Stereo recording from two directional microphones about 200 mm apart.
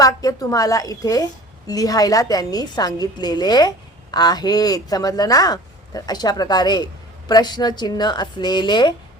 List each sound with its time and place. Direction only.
0.0 s a woman's voice: 15° left (ahead or behind)